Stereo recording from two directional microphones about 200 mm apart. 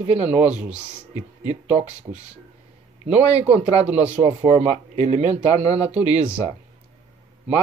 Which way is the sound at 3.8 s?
5° right (ahead or behind).